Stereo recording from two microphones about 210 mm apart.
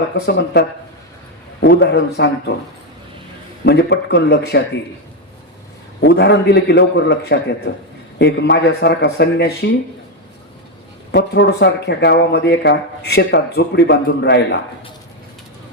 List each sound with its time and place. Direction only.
0.3 s speech: 50° left (ahead or behind)
1.6 s speech: 55° left (ahead or behind)
3.7 s speech: 55° left (ahead or behind)
6.0 s speech: 55° left (ahead or behind)
11.1 s speech: 55° left (ahead or behind)